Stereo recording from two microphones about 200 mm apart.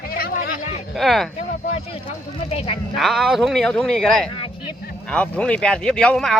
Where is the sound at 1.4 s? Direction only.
30° left (ahead or behind).